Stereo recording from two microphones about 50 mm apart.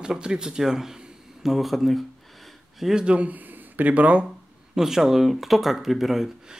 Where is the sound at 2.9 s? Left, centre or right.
Right.